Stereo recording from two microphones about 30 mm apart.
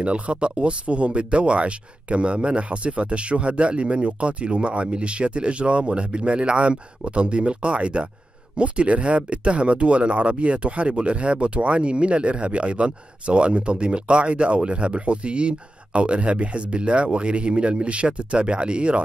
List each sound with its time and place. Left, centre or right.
0.0 s speech: right